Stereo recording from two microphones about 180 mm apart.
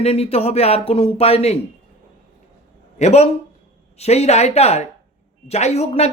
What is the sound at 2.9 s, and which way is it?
A man's voice, 35° left (ahead or behind).